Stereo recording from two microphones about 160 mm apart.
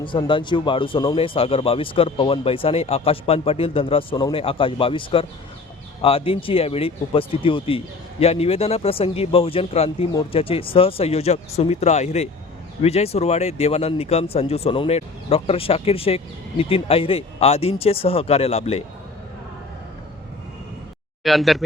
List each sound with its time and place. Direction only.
0.0 s speech: 30° left (ahead or behind)
21.2 s speech: centre (ahead or behind)